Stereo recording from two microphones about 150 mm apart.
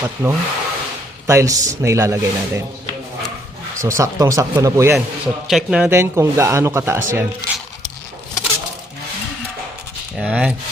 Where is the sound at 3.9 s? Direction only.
20° right (ahead or behind).